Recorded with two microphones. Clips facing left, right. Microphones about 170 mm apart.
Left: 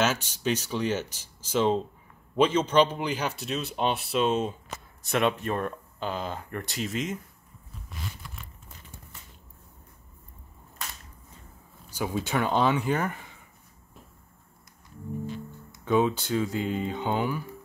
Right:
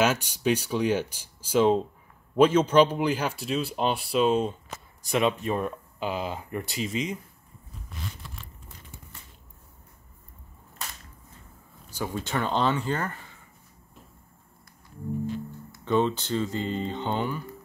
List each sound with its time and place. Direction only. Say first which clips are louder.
0.0 s a man's voice: right 3 dB; 10° right (ahead or behind)
11.9 s speech: left 2 dB; 10° left (ahead or behind)
15.8 s speech: left 1 dB; 10° left (ahead or behind)